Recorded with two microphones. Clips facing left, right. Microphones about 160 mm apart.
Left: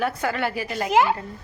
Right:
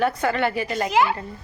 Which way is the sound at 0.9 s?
50° left (ahead or behind).